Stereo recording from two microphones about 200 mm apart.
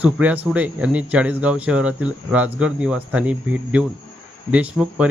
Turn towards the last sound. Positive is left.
turn(degrees=-5)  # may be behind; listen again after turning